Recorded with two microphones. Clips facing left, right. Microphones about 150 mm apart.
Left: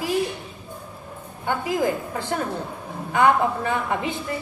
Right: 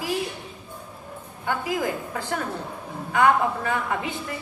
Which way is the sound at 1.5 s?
30° left (ahead or behind).